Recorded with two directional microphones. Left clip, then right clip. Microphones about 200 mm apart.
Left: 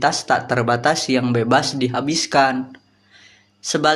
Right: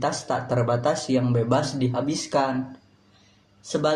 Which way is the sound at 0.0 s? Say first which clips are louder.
Left 8 dB; 20° left (ahead or behind).